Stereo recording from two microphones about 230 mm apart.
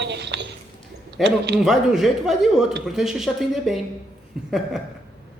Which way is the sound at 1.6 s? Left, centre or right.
Centre.